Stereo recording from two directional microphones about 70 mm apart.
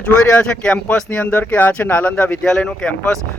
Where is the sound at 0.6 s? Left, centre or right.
Centre.